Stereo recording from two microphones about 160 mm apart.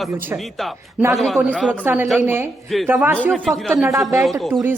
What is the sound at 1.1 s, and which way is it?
Speech, centre (ahead or behind).